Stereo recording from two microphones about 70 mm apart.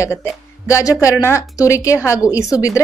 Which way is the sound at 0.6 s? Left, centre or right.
Left.